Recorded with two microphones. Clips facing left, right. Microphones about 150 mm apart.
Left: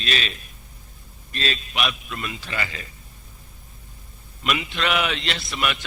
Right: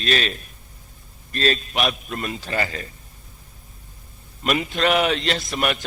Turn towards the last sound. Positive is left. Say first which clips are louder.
# right 3 dB
turn(degrees=-40)  # may be behind; listen again after turning